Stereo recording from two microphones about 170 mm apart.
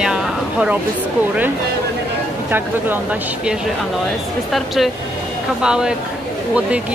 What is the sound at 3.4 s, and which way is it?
Speech, 5° right (ahead or behind).